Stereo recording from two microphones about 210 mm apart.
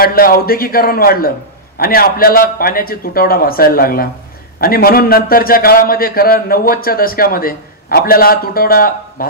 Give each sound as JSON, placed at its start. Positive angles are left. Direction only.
{"t": 0.0, "sound": "a man's voice", "side_deg": 45}